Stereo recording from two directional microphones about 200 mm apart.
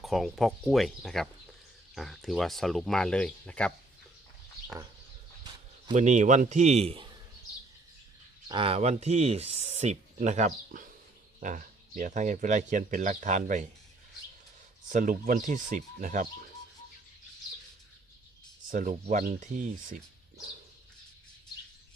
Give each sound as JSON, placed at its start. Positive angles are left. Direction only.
{"t": 0.0, "sound": "speech", "side_deg": 0}
{"t": 5.9, "sound": "speech", "side_deg": -35}
{"t": 8.4, "sound": "speech", "side_deg": -25}
{"t": 14.8, "sound": "speech", "side_deg": -40}
{"t": 18.7, "sound": "speech", "side_deg": -40}